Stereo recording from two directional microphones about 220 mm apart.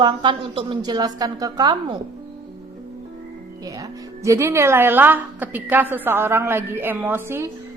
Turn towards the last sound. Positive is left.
turn(degrees=-10)  # may be behind; listen again after turning